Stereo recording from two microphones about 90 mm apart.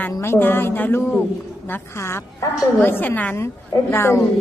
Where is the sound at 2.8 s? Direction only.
20° left (ahead or behind).